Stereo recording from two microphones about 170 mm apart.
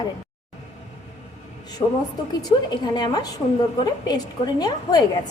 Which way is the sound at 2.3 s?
25° left (ahead or behind).